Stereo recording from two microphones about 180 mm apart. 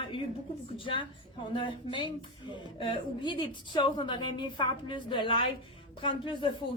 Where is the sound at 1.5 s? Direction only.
25° left (ahead or behind).